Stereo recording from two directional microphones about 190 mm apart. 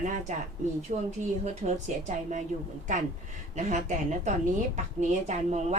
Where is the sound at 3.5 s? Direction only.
40° right (ahead or behind).